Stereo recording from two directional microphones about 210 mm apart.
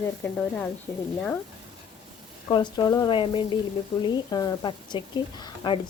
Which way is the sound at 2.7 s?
20° left (ahead or behind).